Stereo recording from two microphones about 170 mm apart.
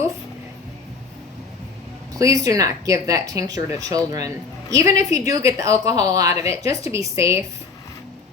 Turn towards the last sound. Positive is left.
turn(degrees=-15)  # may be behind; listen again after turning